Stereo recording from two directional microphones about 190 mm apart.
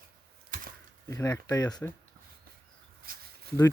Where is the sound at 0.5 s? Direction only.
45° right (ahead or behind).